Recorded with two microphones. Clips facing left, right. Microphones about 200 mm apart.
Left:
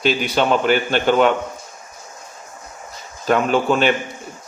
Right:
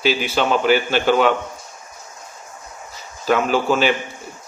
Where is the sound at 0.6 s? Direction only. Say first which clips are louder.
Right 1 dB; 50° left (ahead or behind).